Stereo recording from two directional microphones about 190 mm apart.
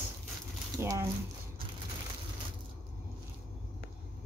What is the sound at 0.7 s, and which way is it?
Speech, 15° right (ahead or behind).